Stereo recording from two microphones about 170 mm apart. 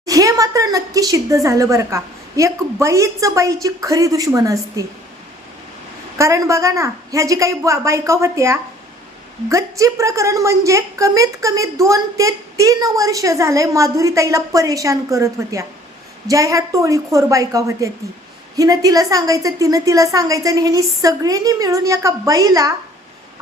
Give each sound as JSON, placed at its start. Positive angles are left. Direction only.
{"t": 0.0, "sound": "a woman's voice", "side_deg": -20}
{"t": 6.1, "sound": "a woman's voice", "side_deg": -20}